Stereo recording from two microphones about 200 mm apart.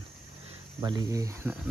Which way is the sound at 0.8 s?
20° right (ahead or behind).